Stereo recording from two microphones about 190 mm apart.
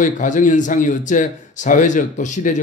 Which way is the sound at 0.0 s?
40° left (ahead or behind).